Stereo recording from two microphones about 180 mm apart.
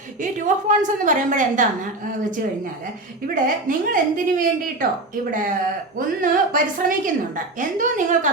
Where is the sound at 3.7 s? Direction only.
50° right (ahead or behind).